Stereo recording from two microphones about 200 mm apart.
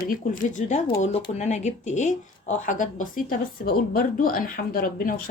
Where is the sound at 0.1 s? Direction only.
40° left (ahead or behind).